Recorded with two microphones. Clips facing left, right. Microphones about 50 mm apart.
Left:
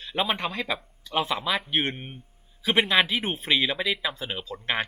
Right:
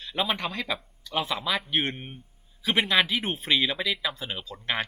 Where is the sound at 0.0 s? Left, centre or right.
Centre.